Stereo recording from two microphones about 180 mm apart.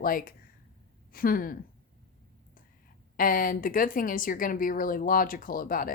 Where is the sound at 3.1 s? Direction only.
50° left (ahead or behind).